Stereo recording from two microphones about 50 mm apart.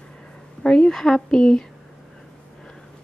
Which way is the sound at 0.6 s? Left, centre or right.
Centre.